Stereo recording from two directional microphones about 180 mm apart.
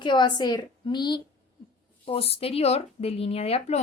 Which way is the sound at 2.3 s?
35° left (ahead or behind).